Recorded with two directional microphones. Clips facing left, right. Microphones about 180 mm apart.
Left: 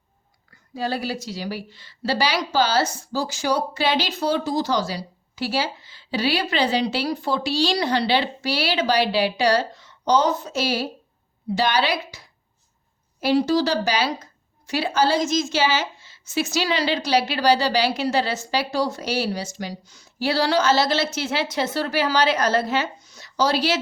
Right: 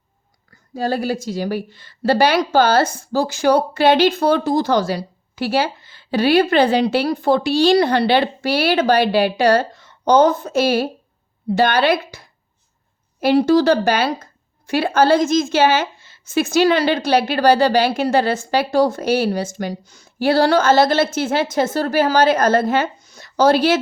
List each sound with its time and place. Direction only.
0.7 s a woman's voice: 45° right (ahead or behind)